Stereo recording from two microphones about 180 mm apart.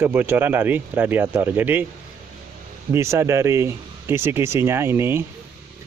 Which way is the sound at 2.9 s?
15° right (ahead or behind).